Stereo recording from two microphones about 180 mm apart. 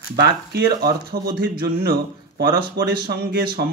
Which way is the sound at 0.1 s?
60° right (ahead or behind).